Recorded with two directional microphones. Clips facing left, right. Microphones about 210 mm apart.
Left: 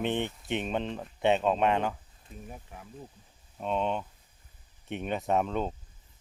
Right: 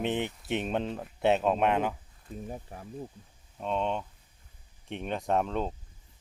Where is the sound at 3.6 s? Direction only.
5° left (ahead or behind).